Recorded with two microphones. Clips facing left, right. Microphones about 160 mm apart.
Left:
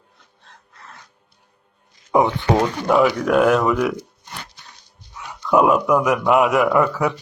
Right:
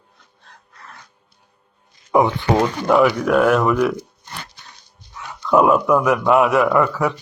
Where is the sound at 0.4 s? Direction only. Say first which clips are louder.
Right 1 dB; 20° left (ahead or behind).